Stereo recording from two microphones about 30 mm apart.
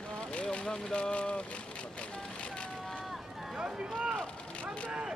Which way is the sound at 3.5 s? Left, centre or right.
Right.